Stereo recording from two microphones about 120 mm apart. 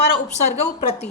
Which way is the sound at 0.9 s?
60° left (ahead or behind).